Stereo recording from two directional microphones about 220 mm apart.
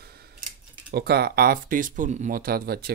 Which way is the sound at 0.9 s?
45° right (ahead or behind).